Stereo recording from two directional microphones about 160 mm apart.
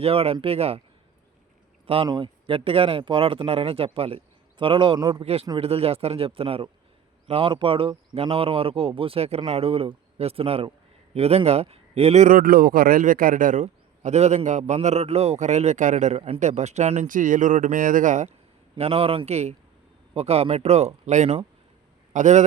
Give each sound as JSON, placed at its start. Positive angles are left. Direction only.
{"t": 0.0, "sound": "speech", "side_deg": -40}
{"t": 2.0, "sound": "speech", "side_deg": -30}
{"t": 5.2, "sound": "speech", "side_deg": -40}
{"t": 18.8, "sound": "speech", "side_deg": -35}